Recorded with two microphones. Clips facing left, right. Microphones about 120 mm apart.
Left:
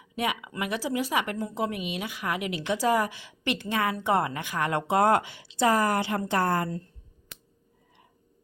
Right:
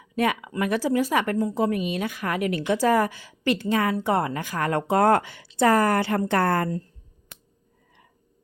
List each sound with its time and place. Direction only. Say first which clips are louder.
0.2 s a woman's voice: right 6 dB; 45° right (ahead or behind)